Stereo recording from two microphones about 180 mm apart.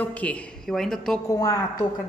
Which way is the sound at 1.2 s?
20° left (ahead or behind).